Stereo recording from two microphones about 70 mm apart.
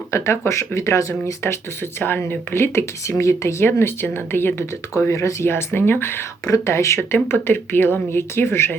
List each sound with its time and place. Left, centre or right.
0.1 s speech: left
2.0 s speech: left
3.7 s speech: left
4.9 s speech: left